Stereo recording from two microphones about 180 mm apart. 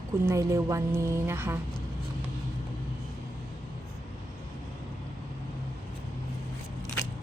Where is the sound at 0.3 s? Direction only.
15° right (ahead or behind).